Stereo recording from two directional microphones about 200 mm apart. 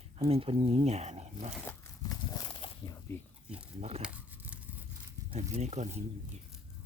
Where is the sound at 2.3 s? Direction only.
20° left (ahead or behind).